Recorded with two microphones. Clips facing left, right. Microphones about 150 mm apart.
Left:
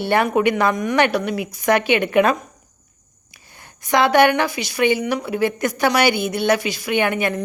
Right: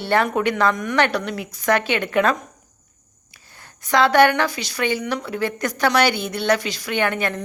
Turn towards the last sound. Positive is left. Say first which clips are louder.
# left 2 dB
turn(degrees=10)  # may be behind; listen again after turning